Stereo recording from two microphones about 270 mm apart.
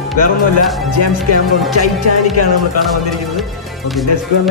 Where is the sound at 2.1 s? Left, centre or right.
Left.